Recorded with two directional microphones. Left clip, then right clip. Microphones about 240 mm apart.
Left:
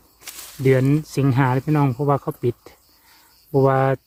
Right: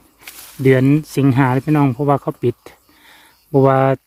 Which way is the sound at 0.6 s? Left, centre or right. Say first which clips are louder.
Right 5 dB; right.